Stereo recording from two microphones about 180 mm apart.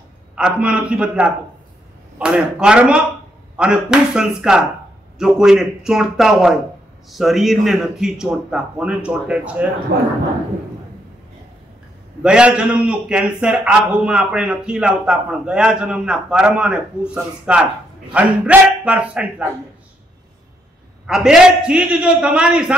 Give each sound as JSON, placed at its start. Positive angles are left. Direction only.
{"t": 0.4, "sound": "a man's voice", "side_deg": -5}
{"t": 9.9, "sound": "speech", "side_deg": -60}
{"t": 12.2, "sound": "a man's voice", "side_deg": -5}
{"t": 21.1, "sound": "a man's voice", "side_deg": -5}